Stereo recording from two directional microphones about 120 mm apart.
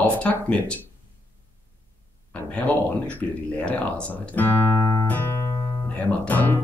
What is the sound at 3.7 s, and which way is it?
Speech, 10° left (ahead or behind).